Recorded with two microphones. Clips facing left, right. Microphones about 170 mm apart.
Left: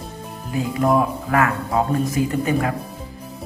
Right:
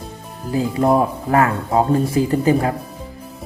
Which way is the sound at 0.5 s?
30° right (ahead or behind).